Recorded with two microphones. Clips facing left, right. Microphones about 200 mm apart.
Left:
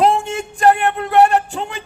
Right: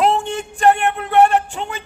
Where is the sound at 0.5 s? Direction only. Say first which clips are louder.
Left 1 dB; 40° left (ahead or behind).